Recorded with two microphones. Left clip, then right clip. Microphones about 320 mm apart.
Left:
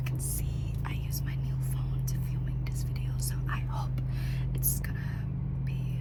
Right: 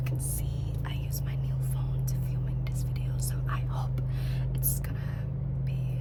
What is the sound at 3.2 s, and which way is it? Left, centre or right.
Whispering, centre.